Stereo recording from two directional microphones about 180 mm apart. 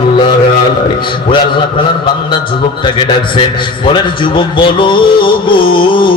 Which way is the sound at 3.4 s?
25° left (ahead or behind).